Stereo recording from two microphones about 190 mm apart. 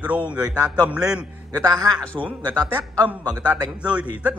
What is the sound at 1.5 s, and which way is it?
A man's voice, 20° right (ahead or behind).